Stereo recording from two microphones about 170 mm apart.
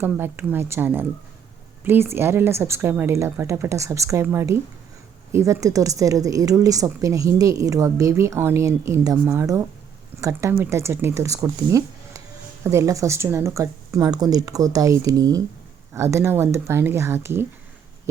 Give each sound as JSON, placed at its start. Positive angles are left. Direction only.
{"t": 0.0, "sound": "a woman's voice", "side_deg": -15}